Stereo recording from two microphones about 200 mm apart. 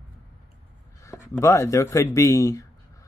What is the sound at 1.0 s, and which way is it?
A man's voice, 10° left (ahead or behind).